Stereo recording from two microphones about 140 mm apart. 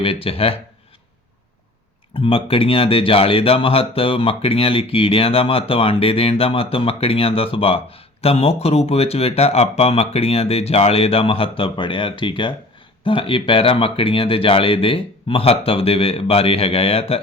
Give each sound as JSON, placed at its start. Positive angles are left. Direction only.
{"t": 0.0, "sound": "speech", "side_deg": 40}
{"t": 2.1, "sound": "speech", "side_deg": 40}